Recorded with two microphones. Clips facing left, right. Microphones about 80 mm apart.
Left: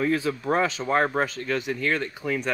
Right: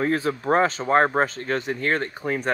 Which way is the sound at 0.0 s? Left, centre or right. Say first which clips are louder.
Right 1 dB; right.